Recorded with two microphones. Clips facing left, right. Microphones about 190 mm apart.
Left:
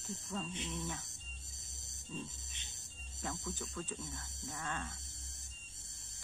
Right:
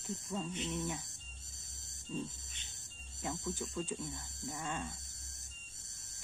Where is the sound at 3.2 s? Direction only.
15° right (ahead or behind).